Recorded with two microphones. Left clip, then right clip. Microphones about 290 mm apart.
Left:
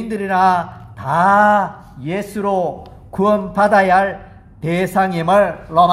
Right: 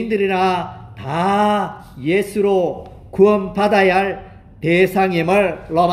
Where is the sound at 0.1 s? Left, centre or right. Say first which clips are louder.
Left 3 dB; left.